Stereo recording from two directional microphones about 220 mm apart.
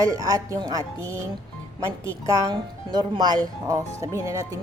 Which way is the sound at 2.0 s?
15° right (ahead or behind).